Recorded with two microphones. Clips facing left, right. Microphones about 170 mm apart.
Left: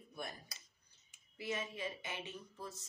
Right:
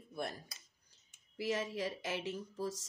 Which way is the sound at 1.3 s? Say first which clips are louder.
Right 5 dB; 85° right.